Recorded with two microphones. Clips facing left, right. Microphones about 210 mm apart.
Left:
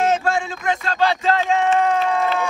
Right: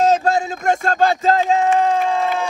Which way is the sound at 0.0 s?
40° right (ahead or behind).